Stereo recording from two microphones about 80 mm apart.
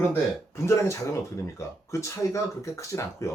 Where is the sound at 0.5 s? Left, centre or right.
Left.